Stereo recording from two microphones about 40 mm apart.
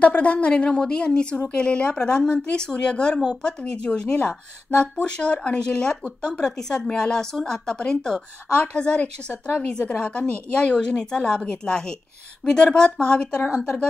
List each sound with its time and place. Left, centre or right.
0.0 s a woman's voice: left
9.7 s speech: left